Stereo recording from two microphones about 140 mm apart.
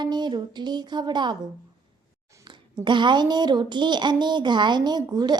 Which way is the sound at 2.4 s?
35° right (ahead or behind).